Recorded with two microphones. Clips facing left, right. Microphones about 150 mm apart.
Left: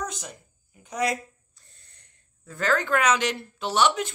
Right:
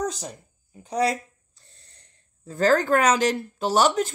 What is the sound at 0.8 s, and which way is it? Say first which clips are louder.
Speech: right 3 dB; 35° right (ahead or behind).